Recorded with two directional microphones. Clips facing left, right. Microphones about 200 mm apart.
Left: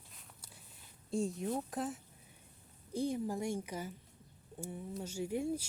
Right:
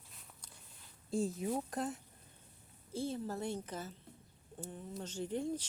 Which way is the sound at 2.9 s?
15° left (ahead or behind).